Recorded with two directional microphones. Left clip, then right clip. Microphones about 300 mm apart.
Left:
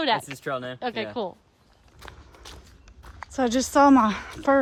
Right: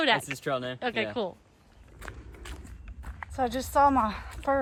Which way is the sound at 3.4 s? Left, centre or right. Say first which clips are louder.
Left 4 dB; left.